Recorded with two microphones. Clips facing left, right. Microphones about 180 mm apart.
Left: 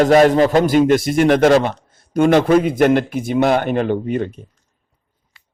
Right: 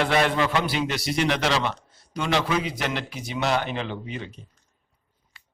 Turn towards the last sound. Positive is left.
turn(degrees=50)  # may be behind; listen again after turning